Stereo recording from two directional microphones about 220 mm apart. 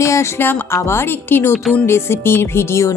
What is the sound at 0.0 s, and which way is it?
Speech, 15° left (ahead or behind).